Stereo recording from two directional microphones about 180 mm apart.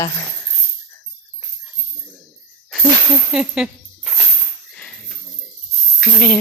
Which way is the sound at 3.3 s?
5° right (ahead or behind).